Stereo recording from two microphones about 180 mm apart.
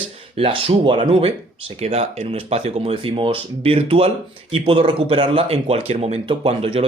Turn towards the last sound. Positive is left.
turn(degrees=-30)  # may be behind; listen again after turning